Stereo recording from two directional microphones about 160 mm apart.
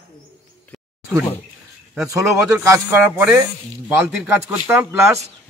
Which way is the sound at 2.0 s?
20° right (ahead or behind).